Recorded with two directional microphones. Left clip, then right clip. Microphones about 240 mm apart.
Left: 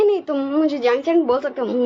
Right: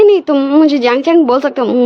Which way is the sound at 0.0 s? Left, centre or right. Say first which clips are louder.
Right 10 dB; right.